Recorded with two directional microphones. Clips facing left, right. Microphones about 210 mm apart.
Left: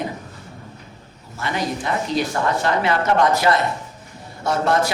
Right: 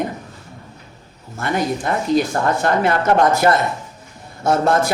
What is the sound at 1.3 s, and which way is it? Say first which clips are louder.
A woman's voice: right 4 dB; 50° right (ahead or behind).